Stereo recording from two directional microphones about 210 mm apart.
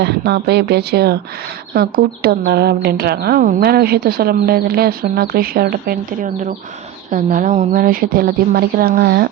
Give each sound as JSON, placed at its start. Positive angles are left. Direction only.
{"t": 0.0, "sound": "speech", "side_deg": -50}